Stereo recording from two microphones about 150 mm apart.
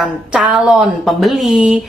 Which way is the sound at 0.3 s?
5° right (ahead or behind).